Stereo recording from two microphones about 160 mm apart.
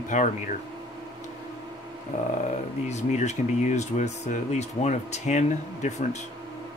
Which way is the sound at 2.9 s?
45° left (ahead or behind).